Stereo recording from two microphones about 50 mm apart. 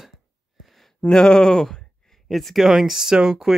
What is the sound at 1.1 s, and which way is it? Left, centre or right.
Speech, centre.